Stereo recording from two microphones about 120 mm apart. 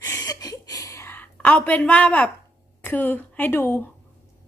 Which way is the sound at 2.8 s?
15° left (ahead or behind).